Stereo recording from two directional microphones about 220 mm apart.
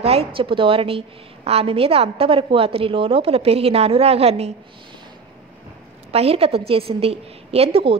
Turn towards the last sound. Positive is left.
turn(degrees=-25)  # may be behind; listen again after turning